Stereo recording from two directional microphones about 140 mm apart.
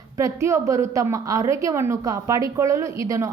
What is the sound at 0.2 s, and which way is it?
A woman's voice, 20° right (ahead or behind).